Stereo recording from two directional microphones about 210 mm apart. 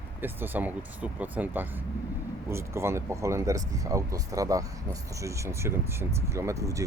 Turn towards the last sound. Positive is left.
turn(degrees=-15)  # may be behind; listen again after turning